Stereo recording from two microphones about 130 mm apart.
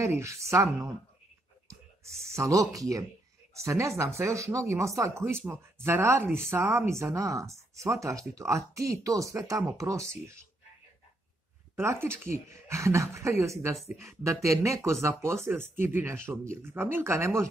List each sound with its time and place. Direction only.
0.0 s speech: 20° right (ahead or behind)
2.0 s speech: 20° right (ahead or behind)
11.7 s speech: 20° right (ahead or behind)